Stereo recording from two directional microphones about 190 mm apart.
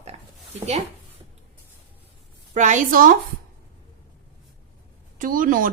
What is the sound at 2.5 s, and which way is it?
Speech, 40° right (ahead or behind).